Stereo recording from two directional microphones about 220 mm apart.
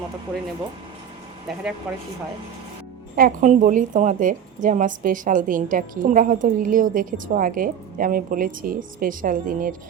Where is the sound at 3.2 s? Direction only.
35° right (ahead or behind).